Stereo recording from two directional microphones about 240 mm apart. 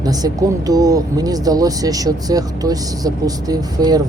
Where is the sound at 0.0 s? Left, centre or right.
Centre.